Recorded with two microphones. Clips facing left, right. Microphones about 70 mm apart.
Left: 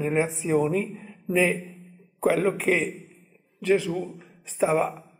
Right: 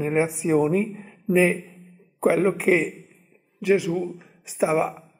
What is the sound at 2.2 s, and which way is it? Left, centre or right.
A woman's voice, centre.